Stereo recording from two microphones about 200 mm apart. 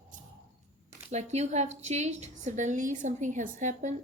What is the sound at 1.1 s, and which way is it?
A woman's voice, 35° right (ahead or behind).